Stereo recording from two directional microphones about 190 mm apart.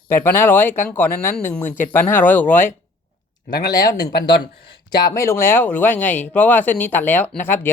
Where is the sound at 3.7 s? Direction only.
20° left (ahead or behind).